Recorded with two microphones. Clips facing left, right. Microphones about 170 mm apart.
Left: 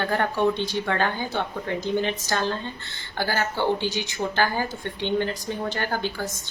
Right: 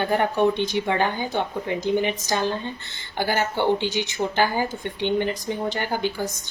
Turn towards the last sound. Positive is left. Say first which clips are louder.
# right 2 dB
turn(degrees=-15)  # may be behind; listen again after turning